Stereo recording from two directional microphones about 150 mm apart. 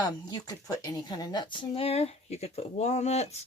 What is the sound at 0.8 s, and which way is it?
Speech, 25° left (ahead or behind).